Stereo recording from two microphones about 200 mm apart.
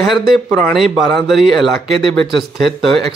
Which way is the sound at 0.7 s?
Centre (ahead or behind).